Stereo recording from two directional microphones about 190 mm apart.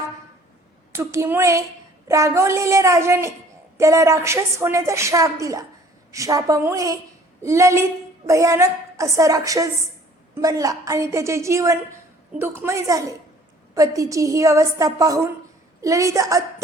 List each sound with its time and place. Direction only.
0.9 s a woman's voice: 15° right (ahead or behind)